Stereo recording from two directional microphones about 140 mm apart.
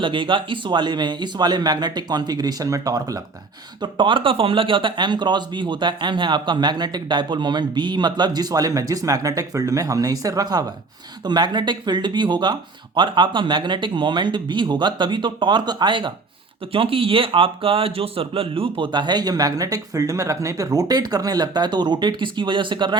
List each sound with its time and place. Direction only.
0.0 s speech: 35° right (ahead or behind)
3.8 s speech: 35° right (ahead or behind)